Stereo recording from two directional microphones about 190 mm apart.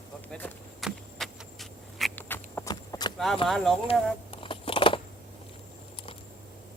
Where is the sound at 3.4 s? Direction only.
Centre (ahead or behind).